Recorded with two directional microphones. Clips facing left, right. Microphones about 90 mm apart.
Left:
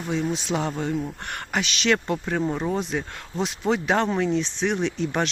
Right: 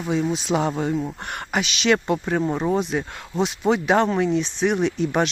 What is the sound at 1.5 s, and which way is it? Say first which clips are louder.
Speech: right 3 dB; 5° right (ahead or behind).